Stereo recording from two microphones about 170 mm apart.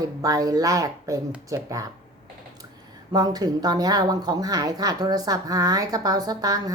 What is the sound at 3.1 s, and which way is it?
Speech, 20° right (ahead or behind).